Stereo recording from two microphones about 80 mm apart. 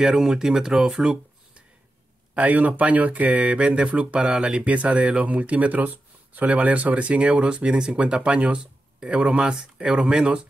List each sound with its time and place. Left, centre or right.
0.0 s speech: centre
2.3 s speech: centre